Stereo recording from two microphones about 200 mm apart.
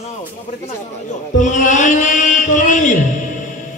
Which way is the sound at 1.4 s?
40° left (ahead or behind).